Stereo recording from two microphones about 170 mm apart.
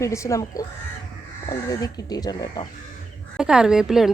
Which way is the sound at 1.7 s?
20° left (ahead or behind).